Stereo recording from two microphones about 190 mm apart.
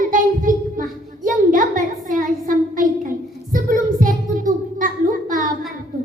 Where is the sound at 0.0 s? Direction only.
45° right (ahead or behind).